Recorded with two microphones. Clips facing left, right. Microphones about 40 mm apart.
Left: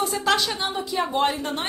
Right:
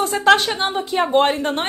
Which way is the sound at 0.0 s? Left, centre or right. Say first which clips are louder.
Right 7 dB; right.